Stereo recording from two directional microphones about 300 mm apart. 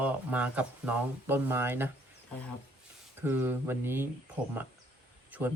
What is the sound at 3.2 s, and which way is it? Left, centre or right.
Speech, centre.